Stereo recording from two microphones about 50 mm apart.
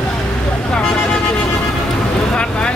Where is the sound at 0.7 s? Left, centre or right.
Centre.